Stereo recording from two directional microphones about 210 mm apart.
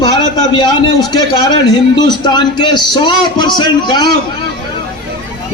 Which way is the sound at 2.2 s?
20° left (ahead or behind).